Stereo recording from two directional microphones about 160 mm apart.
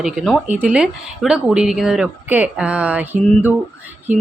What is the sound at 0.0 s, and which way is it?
Speech, 5° right (ahead or behind).